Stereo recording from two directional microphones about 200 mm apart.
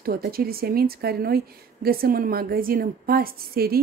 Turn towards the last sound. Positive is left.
turn(degrees=-50)  # may be behind; listen again after turning